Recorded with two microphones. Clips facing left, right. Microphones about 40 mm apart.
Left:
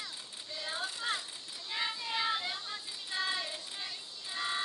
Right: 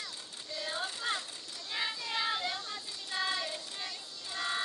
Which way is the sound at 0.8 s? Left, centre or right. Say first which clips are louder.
Even; centre.